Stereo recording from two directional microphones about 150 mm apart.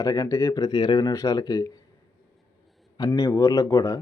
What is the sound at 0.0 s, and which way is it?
A man's voice, 25° left (ahead or behind).